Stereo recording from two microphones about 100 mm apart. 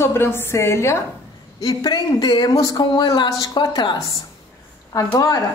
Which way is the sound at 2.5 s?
35° left (ahead or behind).